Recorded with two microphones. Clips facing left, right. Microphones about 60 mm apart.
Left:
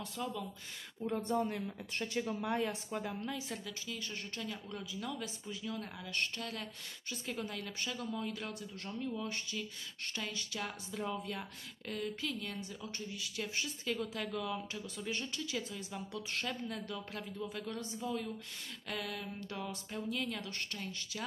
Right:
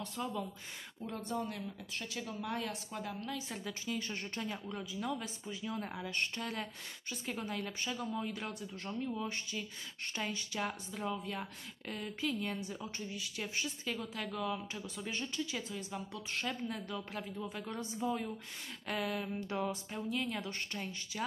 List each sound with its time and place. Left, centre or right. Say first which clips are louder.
0.1 s speech: right 1 dB; centre
1.2 s speech: left 2 dB; left
2.4 s a woman's voice: left 4 dB; centre
3.6 s speech: right 4 dB; right
4.6 s speech: right 3 dB; centre
5.6 s speech: right 3 dB; right
10.6 s speech: right 2 dB; centre